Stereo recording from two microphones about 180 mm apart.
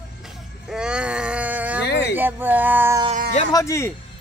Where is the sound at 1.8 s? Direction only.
70° left (ahead or behind).